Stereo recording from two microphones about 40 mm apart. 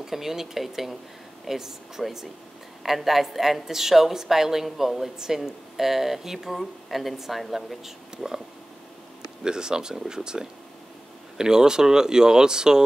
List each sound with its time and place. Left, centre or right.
0.0 s a woman's voice: centre
9.4 s a woman's voice: centre